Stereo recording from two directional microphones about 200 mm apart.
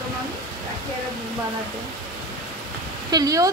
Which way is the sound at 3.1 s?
15° right (ahead or behind).